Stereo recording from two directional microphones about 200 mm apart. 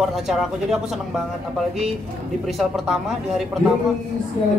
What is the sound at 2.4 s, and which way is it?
Speech, centre (ahead or behind).